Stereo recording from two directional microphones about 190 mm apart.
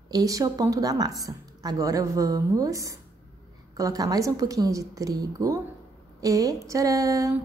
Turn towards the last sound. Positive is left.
turn(degrees=-15)  # may be behind; listen again after turning